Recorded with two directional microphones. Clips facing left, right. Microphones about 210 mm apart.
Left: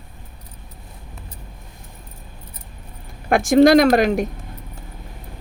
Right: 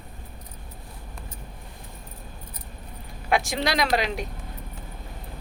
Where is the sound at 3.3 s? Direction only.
50° left (ahead or behind).